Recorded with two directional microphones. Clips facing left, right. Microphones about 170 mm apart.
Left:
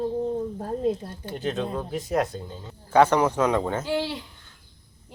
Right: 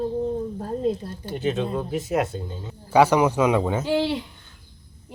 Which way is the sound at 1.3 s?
5° right (ahead or behind).